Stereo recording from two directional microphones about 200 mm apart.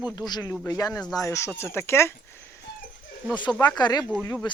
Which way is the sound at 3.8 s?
20° left (ahead or behind).